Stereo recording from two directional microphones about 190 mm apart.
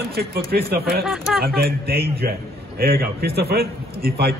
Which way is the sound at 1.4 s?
55° right (ahead or behind).